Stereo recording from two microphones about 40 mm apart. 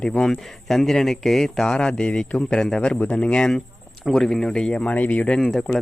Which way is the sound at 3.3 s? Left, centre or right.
Left.